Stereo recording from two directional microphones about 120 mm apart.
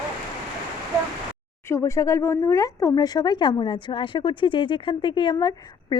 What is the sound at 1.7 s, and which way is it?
Speech, 25° left (ahead or behind).